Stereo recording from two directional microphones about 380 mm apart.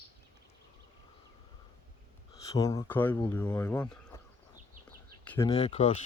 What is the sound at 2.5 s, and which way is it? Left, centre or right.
Speech, centre.